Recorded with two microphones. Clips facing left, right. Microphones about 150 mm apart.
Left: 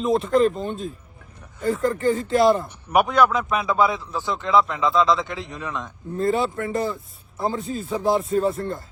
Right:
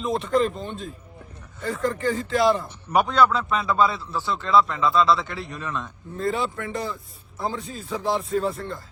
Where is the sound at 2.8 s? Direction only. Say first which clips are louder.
Left 1 dB; 10° left (ahead or behind).